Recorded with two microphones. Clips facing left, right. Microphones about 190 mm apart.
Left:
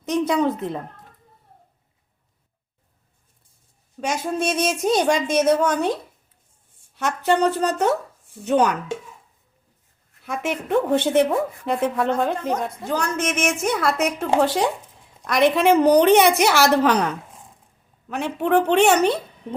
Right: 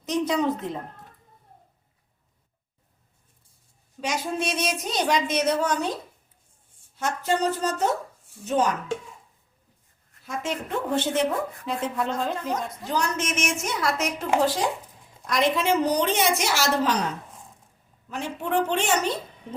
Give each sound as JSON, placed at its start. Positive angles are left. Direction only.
{"t": 0.0, "sound": "a woman's voice", "side_deg": 55}
{"t": 4.0, "sound": "speech", "side_deg": 45}
{"t": 6.9, "sound": "a woman's voice", "side_deg": 70}
{"t": 10.2, "sound": "speech", "side_deg": 65}
{"t": 15.3, "sound": "speech", "side_deg": 65}
{"t": 18.1, "sound": "speech", "side_deg": 65}